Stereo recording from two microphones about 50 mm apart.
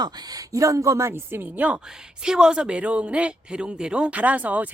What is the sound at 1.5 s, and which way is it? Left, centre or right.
Speech, right.